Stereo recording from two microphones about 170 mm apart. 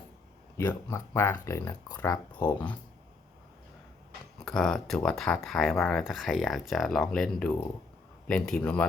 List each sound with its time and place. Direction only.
0.5 s speech: 15° left (ahead or behind)
4.4 s speech: 5° left (ahead or behind)